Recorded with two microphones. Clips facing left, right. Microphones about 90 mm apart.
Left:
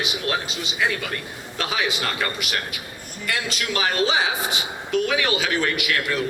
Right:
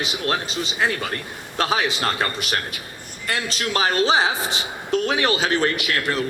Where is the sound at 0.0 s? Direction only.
35° right (ahead or behind).